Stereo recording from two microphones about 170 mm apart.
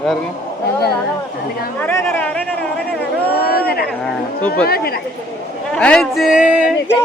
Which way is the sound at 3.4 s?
65° left (ahead or behind).